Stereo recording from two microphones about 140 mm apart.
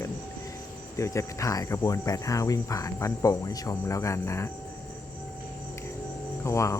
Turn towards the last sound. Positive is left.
turn(degrees=20)  # may be behind; listen again after turning